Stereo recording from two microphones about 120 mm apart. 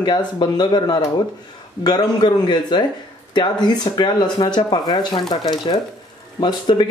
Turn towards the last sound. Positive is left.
turn(degrees=40)  # may be behind; listen again after turning